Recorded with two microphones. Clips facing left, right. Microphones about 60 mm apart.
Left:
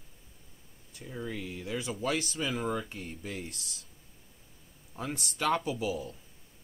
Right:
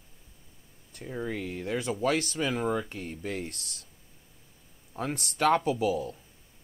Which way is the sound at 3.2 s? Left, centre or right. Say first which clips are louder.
Right 5 dB; right.